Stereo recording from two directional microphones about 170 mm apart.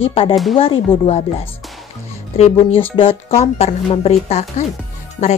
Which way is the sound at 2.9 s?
35° left (ahead or behind).